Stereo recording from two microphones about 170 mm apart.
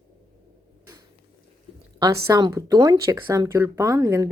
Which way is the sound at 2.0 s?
20° right (ahead or behind).